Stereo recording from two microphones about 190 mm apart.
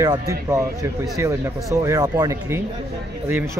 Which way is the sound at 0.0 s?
15° right (ahead or behind).